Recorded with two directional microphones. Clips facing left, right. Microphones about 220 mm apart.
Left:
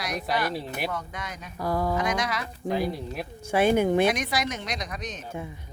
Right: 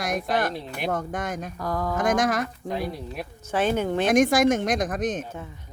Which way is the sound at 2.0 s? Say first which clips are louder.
Right 5 dB; 50° right (ahead or behind).